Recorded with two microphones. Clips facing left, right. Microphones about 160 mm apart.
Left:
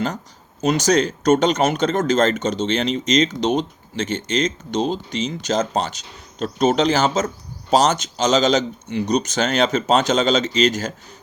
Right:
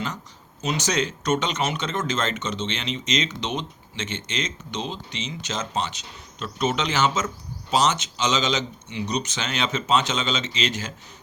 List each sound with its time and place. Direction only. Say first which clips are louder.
0.6 s speech: left 8 dB; 40° left (ahead or behind)